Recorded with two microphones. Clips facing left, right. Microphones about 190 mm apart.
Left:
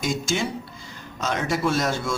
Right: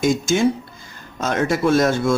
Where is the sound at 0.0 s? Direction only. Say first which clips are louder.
Right 8 dB; 50° right (ahead or behind).